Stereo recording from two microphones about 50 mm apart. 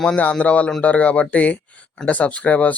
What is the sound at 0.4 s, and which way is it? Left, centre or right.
Speech, left.